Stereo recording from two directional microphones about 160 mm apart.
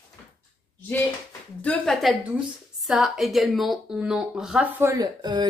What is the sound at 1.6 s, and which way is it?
Speech, 5° left (ahead or behind).